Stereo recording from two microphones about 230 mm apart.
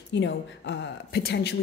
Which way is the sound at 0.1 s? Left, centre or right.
Left.